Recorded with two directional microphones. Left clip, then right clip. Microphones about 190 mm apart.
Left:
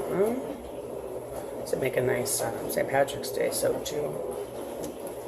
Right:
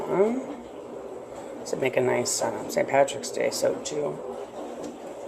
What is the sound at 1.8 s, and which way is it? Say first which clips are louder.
Speech: right 4 dB; 40° right (ahead or behind).